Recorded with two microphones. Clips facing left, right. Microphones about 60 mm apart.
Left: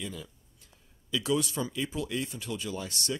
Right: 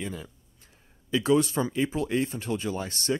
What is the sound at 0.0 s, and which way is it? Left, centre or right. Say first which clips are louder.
Speech: right 4 dB; right.